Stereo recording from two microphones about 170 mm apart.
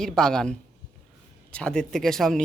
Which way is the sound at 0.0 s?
5° left (ahead or behind).